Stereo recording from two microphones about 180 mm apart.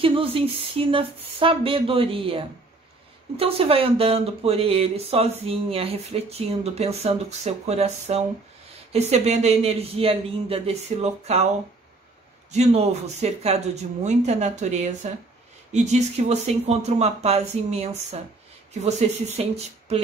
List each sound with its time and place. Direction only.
0.0 s speech: 30° right (ahead or behind)